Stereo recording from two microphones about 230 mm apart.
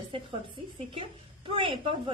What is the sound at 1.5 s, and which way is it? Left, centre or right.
Speech, right.